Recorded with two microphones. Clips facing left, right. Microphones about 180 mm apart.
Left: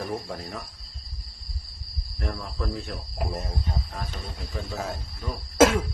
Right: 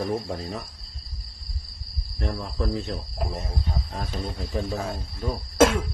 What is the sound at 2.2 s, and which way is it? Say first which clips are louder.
Speech: right 3 dB; 25° right (ahead or behind).